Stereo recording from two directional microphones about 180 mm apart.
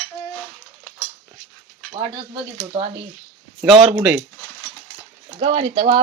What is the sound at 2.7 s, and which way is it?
Speech, 20° right (ahead or behind).